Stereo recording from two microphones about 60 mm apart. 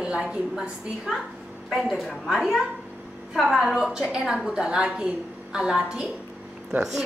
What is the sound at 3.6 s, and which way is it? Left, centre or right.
A woman's voice, centre.